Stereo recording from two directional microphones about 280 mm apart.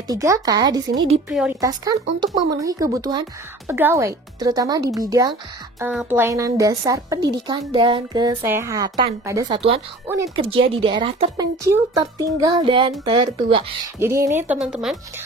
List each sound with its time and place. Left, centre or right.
0.1 s speech: centre